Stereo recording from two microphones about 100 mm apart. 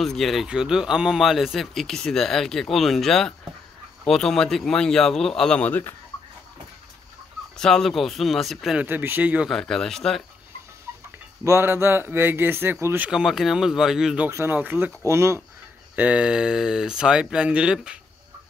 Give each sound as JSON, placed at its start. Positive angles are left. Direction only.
{"t": 0.0, "sound": "speech", "side_deg": 0}
{"t": 7.5, "sound": "speech", "side_deg": 5}
{"t": 8.7, "sound": "speech", "side_deg": -20}
{"t": 9.5, "sound": "speech", "side_deg": 5}
{"t": 11.4, "sound": "speech", "side_deg": -25}
{"t": 13.0, "sound": "speech", "side_deg": -5}
{"t": 14.3, "sound": "speech", "side_deg": -20}
{"t": 15.0, "sound": "speech", "side_deg": -30}
{"t": 16.0, "sound": "speech", "side_deg": -10}